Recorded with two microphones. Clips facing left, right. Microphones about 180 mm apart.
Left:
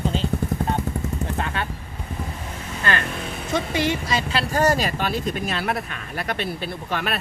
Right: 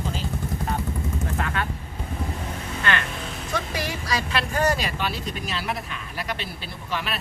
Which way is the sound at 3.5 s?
25° left (ahead or behind).